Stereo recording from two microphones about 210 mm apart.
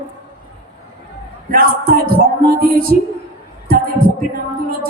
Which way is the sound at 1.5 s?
45° right (ahead or behind).